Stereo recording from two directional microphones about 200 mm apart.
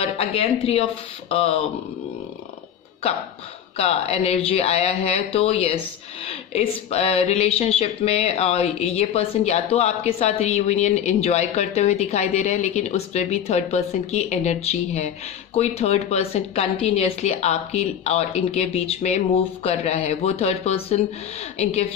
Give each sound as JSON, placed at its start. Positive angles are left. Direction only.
{"t": 0.0, "sound": "speech", "side_deg": 30}
{"t": 3.7, "sound": "speech", "side_deg": 30}